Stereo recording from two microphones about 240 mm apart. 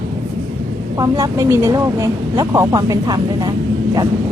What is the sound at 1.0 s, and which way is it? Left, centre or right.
Speech, centre.